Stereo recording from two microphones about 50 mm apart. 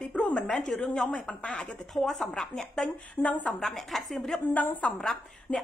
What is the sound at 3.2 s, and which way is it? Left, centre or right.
Speech, left.